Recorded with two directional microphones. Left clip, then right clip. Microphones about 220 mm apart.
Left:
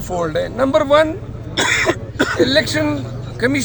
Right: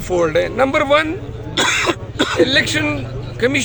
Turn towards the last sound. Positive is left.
turn(degrees=-20)  # may be behind; listen again after turning